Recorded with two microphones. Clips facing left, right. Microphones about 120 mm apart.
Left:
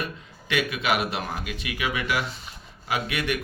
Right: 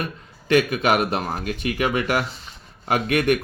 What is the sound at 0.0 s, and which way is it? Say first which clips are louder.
Speech: right 3 dB; 45° right (ahead or behind).